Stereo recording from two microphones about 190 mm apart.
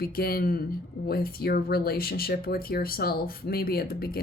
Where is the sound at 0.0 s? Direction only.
55° left (ahead or behind).